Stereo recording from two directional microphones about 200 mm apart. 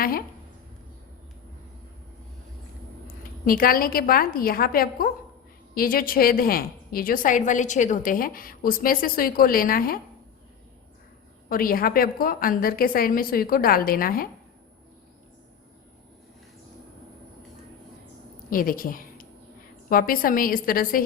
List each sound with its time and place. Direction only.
3.4 s a woman's voice: 45° left (ahead or behind)
11.4 s a woman's voice: 45° left (ahead or behind)
18.5 s a woman's voice: 45° left (ahead or behind)